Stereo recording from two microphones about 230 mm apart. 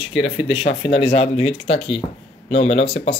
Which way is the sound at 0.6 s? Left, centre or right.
Left.